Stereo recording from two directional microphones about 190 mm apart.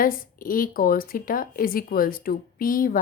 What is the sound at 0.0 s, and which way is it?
Speech, 50° left (ahead or behind).